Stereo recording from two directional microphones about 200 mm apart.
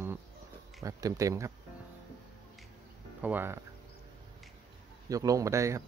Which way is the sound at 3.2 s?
10° right (ahead or behind).